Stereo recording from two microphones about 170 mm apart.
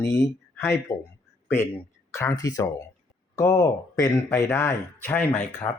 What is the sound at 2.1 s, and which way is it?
Speech, 15° left (ahead or behind).